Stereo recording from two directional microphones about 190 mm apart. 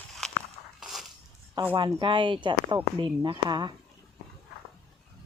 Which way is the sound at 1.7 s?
25° right (ahead or behind).